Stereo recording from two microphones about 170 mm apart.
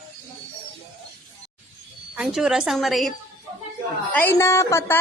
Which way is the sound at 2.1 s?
5° right (ahead or behind).